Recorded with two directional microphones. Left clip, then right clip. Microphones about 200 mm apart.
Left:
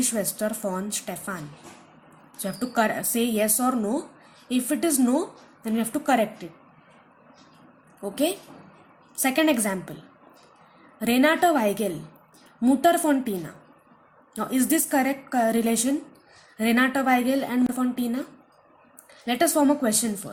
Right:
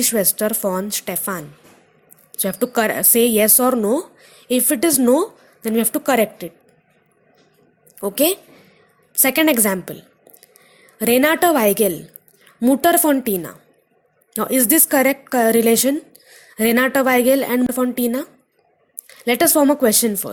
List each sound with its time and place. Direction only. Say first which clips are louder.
0.0 s a woman's voice: right 8 dB; 45° right (ahead or behind)
2.4 s a woman's voice: right 6 dB; 45° right (ahead or behind)
8.0 s a woman's voice: right 8 dB; 50° right (ahead or behind)
10.9 s a woman's voice: right 6 dB; 50° right (ahead or behind)